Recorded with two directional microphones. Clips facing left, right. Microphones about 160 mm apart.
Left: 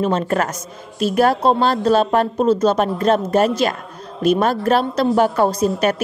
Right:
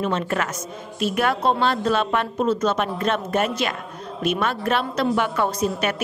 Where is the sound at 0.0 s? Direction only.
40° left (ahead or behind).